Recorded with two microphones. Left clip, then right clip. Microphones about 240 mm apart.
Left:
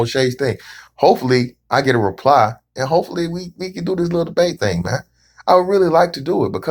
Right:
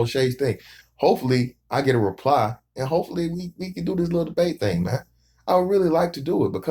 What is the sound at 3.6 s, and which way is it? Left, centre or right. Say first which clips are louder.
Speech: left 6 dB; centre.